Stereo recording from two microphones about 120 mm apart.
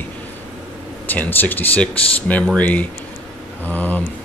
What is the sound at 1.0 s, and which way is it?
Speech, 15° left (ahead or behind).